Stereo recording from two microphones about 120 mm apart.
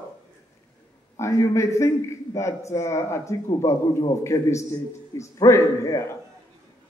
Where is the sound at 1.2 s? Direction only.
25° left (ahead or behind).